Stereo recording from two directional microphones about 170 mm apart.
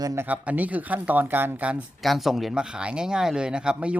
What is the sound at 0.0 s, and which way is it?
Speech, 20° right (ahead or behind).